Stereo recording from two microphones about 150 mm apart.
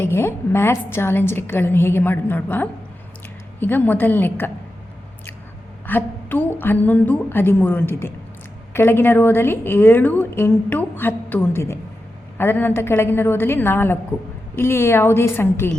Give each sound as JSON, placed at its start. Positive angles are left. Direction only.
{"t": 0.0, "sound": "a woman's voice", "side_deg": 15}
{"t": 5.8, "sound": "a woman's voice", "side_deg": 10}